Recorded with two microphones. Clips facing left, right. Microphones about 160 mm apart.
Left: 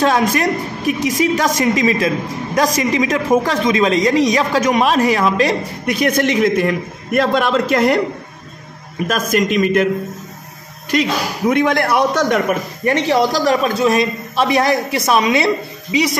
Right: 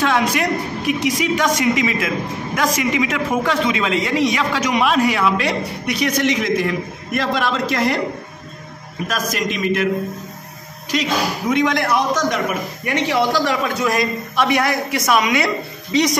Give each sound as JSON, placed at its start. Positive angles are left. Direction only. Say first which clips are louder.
{"t": 0.0, "sound": "a woman's voice", "louder": "left 3 dB", "side_deg": 40}
{"t": 9.0, "sound": "a man's voice", "louder": "left 6 dB", "side_deg": 50}
{"t": 10.9, "sound": "a man's voice", "louder": "left 2 dB", "side_deg": 50}
{"t": 12.8, "sound": "a woman's voice", "louder": "left 4 dB", "side_deg": 40}
{"t": 13.8, "sound": "a woman's voice", "louder": "left 4 dB", "side_deg": 25}
{"t": 15.9, "sound": "speech", "louder": "even", "side_deg": 5}